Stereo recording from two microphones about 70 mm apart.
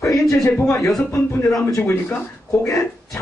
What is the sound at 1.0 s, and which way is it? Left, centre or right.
A man's voice, left.